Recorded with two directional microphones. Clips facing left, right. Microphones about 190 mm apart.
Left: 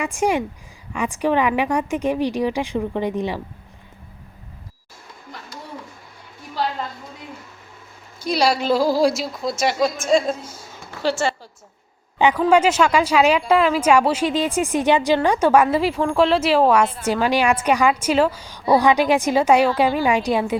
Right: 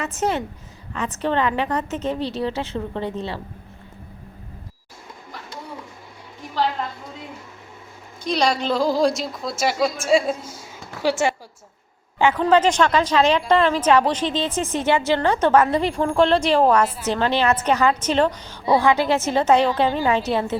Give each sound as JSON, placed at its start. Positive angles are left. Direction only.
{"t": 0.0, "sound": "a woman's voice", "side_deg": 10}
{"t": 8.2, "sound": "a woman's voice", "side_deg": 5}
{"t": 12.4, "sound": "a woman's voice", "side_deg": 10}
{"t": 16.8, "sound": "a woman's voice", "side_deg": -10}
{"t": 17.1, "sound": "a woman's voice", "side_deg": 10}